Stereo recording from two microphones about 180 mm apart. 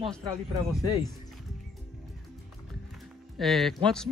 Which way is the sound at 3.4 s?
Centre (ahead or behind).